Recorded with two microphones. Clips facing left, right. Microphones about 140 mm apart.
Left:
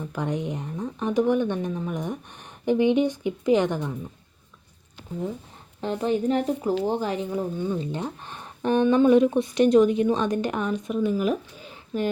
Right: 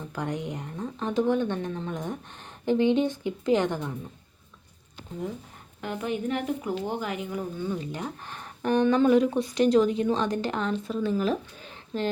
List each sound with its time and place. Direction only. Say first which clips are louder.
0.1 s speech: left 3 dB; 20° left (ahead or behind)
5.8 s speech: left 6 dB; 35° left (ahead or behind)
7.6 s speech: left 4 dB; 20° left (ahead or behind)